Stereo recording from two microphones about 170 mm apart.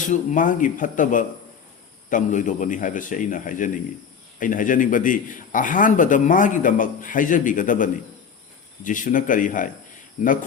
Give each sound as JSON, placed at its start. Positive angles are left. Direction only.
{"t": 0.0, "sound": "a man's voice", "side_deg": 45}